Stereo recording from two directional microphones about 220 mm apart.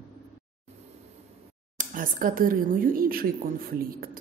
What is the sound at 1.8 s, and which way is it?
A woman's voice, 40° right (ahead or behind).